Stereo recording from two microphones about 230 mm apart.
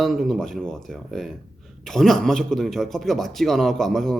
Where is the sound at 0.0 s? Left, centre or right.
Centre.